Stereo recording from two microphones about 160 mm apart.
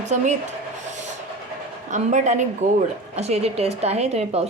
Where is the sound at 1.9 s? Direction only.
50° right (ahead or behind).